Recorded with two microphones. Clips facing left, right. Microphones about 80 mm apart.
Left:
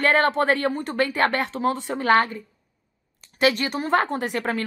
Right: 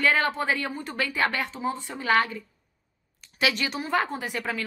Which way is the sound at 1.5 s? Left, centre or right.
Left.